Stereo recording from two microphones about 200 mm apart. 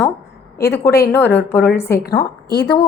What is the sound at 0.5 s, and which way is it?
Speech, 50° left (ahead or behind).